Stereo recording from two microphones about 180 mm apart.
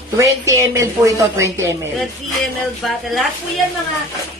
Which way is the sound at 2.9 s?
Centre (ahead or behind).